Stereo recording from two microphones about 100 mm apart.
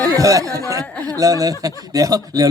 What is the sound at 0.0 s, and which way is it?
A man's voice, 35° right (ahead or behind).